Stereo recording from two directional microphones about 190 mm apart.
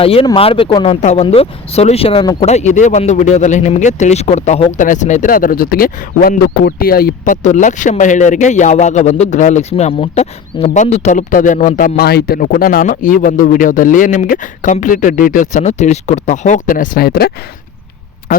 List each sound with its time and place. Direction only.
0.0 s speech: 30° left (ahead or behind); by 17.3 s 55° left (ahead or behind)